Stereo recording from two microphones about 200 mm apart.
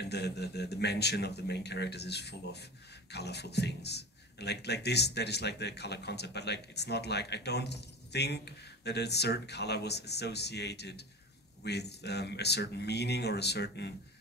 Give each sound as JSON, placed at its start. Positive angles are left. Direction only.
{"t": 0.0, "sound": "a man's voice", "side_deg": 55}